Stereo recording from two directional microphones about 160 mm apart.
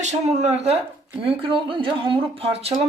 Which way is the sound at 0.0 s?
45° right (ahead or behind).